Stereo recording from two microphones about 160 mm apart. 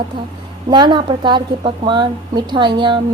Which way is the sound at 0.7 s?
30° right (ahead or behind).